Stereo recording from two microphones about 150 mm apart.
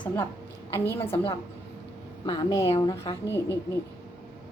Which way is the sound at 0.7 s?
15° left (ahead or behind).